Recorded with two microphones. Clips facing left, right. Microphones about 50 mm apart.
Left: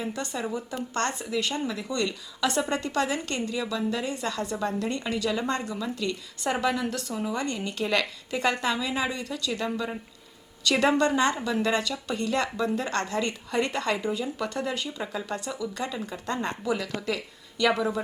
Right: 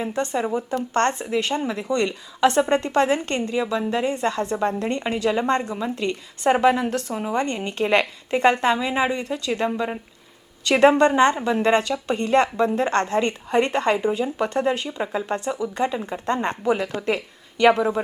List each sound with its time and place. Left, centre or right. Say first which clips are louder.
0.0 s a woman's voice: right 7 dB; right